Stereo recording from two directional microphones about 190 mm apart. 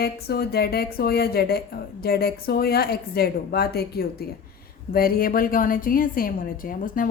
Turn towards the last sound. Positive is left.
turn(degrees=45)  # may be behind; listen again after turning